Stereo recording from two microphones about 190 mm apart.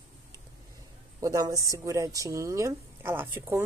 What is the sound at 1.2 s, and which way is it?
A woman's voice, 15° right (ahead or behind).